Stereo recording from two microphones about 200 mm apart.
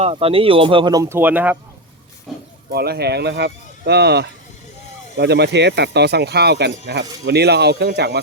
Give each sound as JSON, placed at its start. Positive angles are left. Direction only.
{"t": 0.0, "sound": "speech", "side_deg": -30}
{"t": 2.3, "sound": "a sound", "side_deg": 0}
{"t": 2.6, "sound": "speech", "side_deg": -55}